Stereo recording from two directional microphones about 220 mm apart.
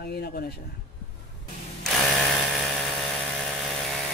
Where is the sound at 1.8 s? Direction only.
Centre (ahead or behind).